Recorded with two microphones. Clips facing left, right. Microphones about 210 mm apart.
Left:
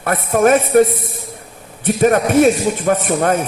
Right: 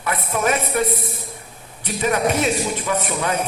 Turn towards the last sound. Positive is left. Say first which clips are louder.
# left 6 dB
turn(degrees=50)  # may be behind; listen again after turning